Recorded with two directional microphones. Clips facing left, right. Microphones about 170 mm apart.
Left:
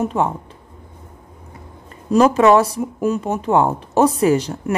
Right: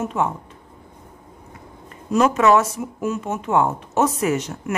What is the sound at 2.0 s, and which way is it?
Speech, 30° left (ahead or behind).